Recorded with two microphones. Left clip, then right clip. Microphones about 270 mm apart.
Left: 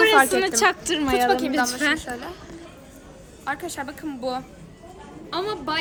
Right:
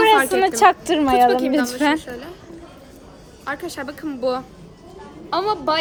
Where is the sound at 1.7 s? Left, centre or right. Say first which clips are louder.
Right 3 dB; right.